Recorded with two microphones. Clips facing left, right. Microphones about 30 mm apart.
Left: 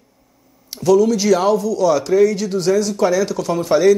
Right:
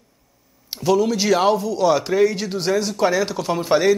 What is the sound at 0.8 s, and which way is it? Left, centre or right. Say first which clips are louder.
Speech: left 4 dB; right.